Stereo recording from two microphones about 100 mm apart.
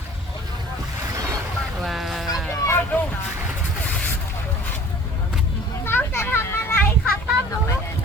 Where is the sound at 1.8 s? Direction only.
Centre (ahead or behind).